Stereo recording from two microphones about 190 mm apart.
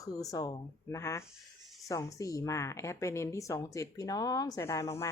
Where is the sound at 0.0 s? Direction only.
20° left (ahead or behind).